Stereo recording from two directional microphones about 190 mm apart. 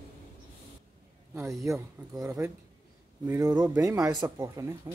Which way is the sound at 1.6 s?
15° right (ahead or behind).